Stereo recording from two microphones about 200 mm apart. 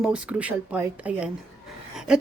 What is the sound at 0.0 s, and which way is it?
A woman's voice, 5° right (ahead or behind).